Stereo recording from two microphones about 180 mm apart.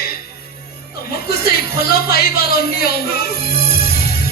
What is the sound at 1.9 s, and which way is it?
Speech, 60° left (ahead or behind).